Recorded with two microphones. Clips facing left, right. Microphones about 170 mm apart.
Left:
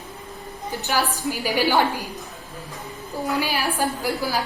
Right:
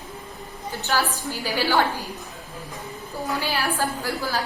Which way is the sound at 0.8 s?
15° left (ahead or behind).